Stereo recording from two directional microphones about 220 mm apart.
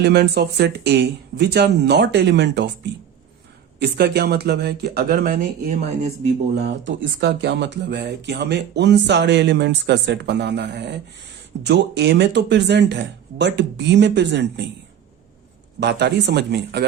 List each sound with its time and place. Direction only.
0.0 s speech: 50° right (ahead or behind)
3.8 s speech: 45° right (ahead or behind)
6.6 s speech: 50° right (ahead or behind)
15.8 s speech: 50° right (ahead or behind)